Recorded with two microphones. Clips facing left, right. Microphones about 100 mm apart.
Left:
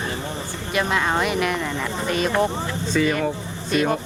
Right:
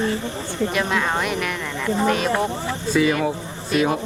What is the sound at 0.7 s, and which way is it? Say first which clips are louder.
Speech: left 4 dB; centre (ahead or behind).